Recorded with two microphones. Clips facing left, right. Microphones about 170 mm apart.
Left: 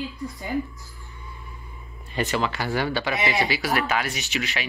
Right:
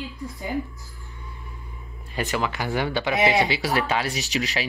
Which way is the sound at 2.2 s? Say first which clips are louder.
Left 1 dB; 10° right (ahead or behind).